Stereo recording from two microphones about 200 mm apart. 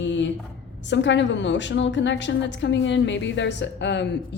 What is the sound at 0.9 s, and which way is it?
A woman's voice, 65° left (ahead or behind).